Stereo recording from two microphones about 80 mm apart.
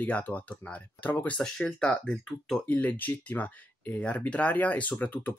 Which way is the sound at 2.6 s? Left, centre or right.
Left.